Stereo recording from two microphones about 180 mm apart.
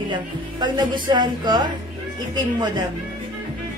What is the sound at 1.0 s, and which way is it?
Speech, 25° right (ahead or behind).